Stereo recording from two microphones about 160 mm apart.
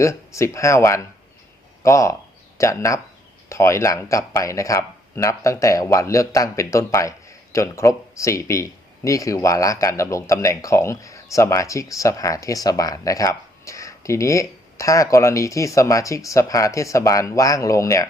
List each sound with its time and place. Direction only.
0.0 s speech: 20° left (ahead or behind)